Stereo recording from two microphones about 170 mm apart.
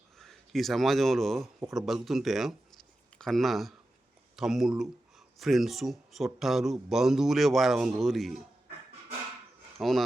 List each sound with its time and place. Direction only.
0.2 s speech: centre (ahead or behind)
9.7 s speech: centre (ahead or behind)